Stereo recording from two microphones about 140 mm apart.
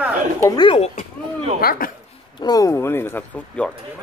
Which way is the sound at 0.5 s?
40° left (ahead or behind).